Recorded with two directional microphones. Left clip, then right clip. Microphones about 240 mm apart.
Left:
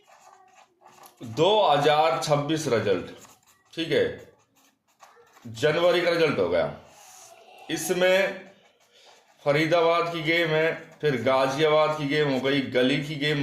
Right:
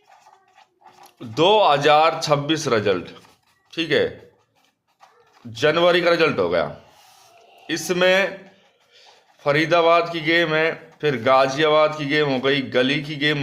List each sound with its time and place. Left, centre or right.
1.3 s a man's voice: right
5.5 s a man's voice: right
7.7 s a man's voice: right